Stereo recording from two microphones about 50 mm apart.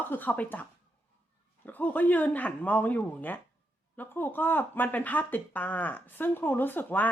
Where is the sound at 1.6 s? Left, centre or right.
Left.